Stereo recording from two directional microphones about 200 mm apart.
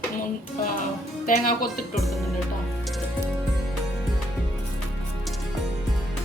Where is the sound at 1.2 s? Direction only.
45° left (ahead or behind).